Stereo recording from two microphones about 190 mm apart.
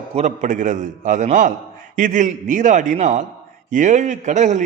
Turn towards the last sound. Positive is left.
turn(degrees=-40)  # may be behind; listen again after turning